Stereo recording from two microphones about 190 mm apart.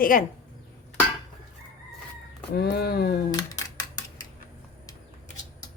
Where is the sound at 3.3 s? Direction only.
20° left (ahead or behind).